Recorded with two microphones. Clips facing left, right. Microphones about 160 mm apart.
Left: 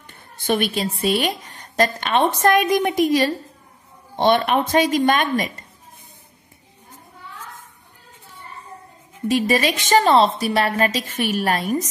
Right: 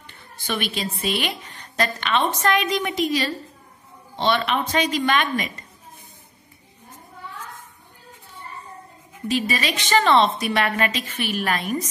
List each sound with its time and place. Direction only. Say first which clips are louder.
0.0 s a woman's voice: left 7 dB; 45° left (ahead or behind)
9.3 s a woman's voice: left 5 dB; 50° left (ahead or behind)